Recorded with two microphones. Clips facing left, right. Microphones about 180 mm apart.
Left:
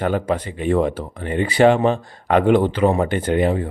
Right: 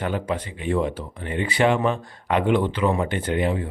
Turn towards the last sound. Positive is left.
turn(degrees=40)  # may be behind; listen again after turning